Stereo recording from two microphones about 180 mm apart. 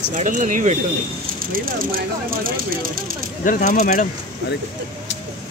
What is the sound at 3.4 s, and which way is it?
Speech, 45° left (ahead or behind).